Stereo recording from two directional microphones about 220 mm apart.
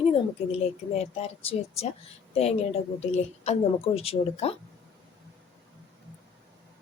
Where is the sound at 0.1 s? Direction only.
30° left (ahead or behind).